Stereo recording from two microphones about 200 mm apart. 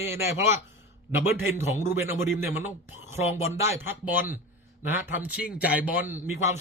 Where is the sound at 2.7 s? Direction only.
10° right (ahead or behind).